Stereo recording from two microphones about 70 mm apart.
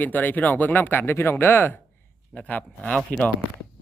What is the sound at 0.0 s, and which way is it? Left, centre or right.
Speech, left.